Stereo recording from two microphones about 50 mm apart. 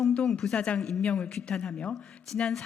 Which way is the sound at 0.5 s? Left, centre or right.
Left.